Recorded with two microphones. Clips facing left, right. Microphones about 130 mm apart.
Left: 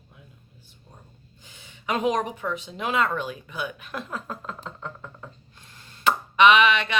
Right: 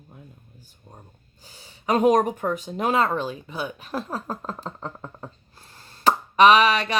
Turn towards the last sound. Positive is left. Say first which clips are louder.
# right 2 dB
turn(degrees=-40)  # may be behind; listen again after turning